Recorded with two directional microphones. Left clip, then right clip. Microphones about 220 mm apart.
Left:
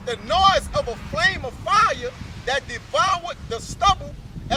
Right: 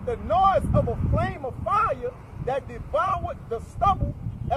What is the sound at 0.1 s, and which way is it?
Speech, 10° left (ahead or behind).